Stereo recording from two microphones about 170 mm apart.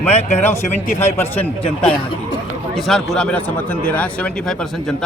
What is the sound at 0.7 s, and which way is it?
Speech, 40° left (ahead or behind).